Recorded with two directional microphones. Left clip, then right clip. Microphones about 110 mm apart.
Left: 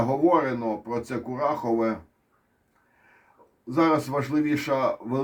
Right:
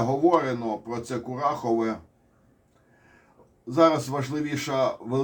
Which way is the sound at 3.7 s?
45° left (ahead or behind).